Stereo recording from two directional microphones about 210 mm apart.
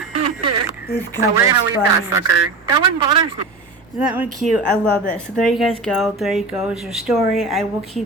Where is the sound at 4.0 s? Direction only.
5° right (ahead or behind).